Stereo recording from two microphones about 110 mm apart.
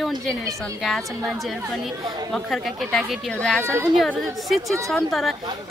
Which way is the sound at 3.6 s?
25° right (ahead or behind).